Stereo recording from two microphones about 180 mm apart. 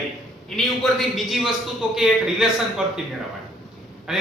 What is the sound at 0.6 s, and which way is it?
A man's voice, centre (ahead or behind).